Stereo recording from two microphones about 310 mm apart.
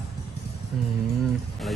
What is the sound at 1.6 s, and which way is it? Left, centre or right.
Speech, centre.